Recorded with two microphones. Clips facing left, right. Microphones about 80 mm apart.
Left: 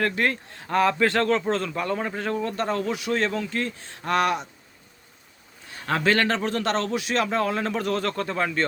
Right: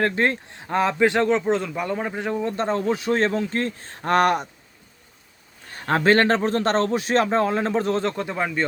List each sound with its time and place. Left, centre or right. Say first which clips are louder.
0.0 s speech: right 3 dB; right
5.7 s a man's voice: right 4 dB; right; by 8.6 s centre